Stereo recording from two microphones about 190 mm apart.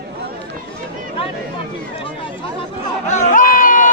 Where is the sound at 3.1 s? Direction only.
45° left (ahead or behind).